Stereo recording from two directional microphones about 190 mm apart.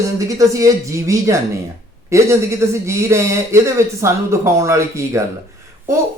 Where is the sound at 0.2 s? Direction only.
15° right (ahead or behind).